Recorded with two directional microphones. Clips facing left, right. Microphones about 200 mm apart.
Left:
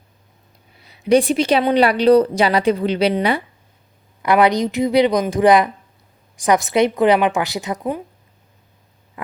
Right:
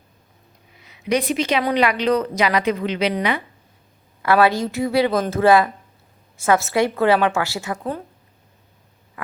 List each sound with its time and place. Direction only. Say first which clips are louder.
0.8 s speech: left 7 dB; 30° left (ahead or behind)
4.2 s a woman's voice: left 2 dB; 20° left (ahead or behind)
9.2 s hum: left 3 dB; 20° left (ahead or behind)